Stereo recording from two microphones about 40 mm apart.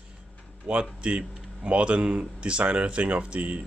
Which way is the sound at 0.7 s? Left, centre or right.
Right.